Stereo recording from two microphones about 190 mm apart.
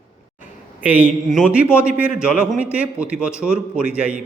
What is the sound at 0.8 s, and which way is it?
A man's voice, 10° right (ahead or behind).